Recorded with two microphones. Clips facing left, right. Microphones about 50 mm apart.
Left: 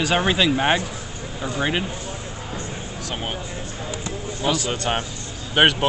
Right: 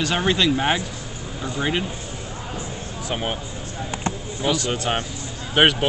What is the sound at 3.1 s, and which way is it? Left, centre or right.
Speech, centre.